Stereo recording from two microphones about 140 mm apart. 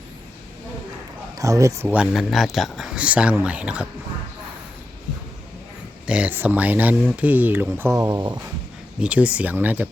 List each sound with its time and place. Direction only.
1.4 s speech: 25° right (ahead or behind)
2.0 s speech: centre (ahead or behind)
6.1 s speech: 10° right (ahead or behind)
7.9 s speech: 25° right (ahead or behind)
9.0 s speech: 10° right (ahead or behind)